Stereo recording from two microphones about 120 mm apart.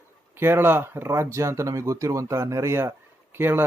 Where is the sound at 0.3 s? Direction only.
20° right (ahead or behind).